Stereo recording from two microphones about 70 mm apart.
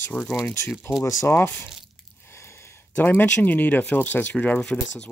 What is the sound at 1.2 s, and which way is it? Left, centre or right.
Speech, left.